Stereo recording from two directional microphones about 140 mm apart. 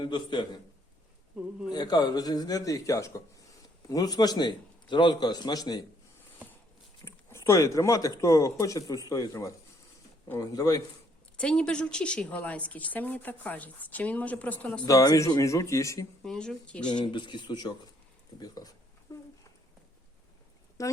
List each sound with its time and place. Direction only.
0.0 s speech: 35° left (ahead or behind)
1.7 s a man's voice: 30° left (ahead or behind)
7.0 s a man's voice: 20° left (ahead or behind)
11.3 s a woman's voice: 5° left (ahead or behind)
14.8 s a man's voice: 25° left (ahead or behind)
16.2 s speech: 5° left (ahead or behind)
16.8 s a man's voice: 35° left (ahead or behind)
19.1 s a sound: 20° left (ahead or behind)
20.8 s a man's voice: 20° left (ahead or behind)